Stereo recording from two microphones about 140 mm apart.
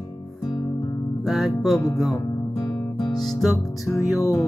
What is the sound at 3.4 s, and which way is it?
Music, centre (ahead or behind).